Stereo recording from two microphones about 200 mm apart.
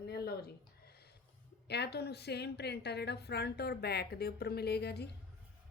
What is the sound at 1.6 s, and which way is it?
A woman's voice, 55° left (ahead or behind).